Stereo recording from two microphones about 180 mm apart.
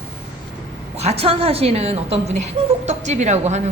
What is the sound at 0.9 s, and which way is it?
A woman's voice, 35° right (ahead or behind).